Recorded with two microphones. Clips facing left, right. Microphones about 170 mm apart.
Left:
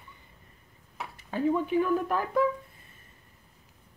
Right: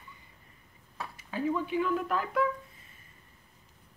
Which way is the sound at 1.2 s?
55° left (ahead or behind).